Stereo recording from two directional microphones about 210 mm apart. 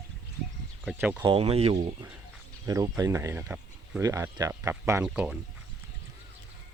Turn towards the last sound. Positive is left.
turn(degrees=-5)  # may be behind; listen again after turning